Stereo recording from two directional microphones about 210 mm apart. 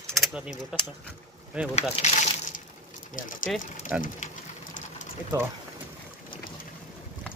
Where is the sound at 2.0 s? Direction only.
30° left (ahead or behind).